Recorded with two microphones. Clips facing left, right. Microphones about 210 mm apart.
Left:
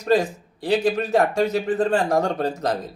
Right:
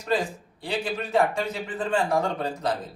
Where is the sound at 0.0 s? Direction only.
40° left (ahead or behind).